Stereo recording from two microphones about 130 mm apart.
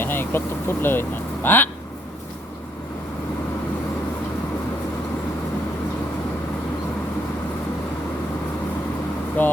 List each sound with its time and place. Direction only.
0.0 s speech: 15° left (ahead or behind)
9.4 s air conditioning: 15° left (ahead or behind)